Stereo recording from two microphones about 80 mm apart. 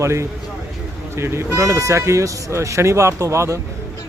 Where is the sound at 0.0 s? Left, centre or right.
Right.